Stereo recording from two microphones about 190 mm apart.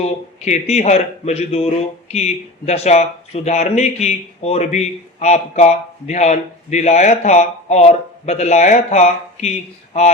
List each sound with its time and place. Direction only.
0.0 s a man's voice: 35° left (ahead or behind)